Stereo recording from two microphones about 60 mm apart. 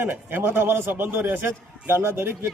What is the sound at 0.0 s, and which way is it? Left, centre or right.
Speech, right.